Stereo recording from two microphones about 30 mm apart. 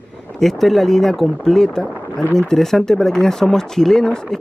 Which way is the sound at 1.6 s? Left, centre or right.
Left.